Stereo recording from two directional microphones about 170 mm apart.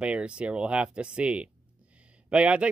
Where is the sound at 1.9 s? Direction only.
5° right (ahead or behind).